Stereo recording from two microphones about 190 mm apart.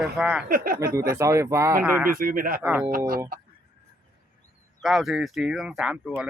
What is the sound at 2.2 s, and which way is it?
Speech, 50° right (ahead or behind).